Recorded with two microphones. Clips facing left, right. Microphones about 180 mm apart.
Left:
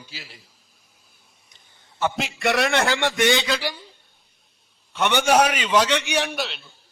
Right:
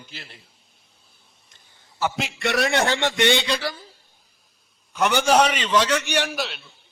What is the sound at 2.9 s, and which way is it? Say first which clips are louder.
Speech: even; 20° right (ahead or behind).